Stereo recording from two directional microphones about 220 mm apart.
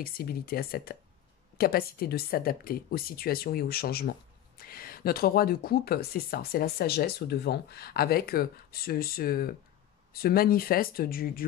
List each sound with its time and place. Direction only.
0.0 s speech: 45° left (ahead or behind)